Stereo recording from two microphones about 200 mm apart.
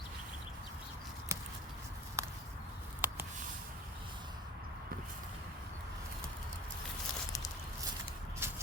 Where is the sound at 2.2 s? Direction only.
15° right (ahead or behind).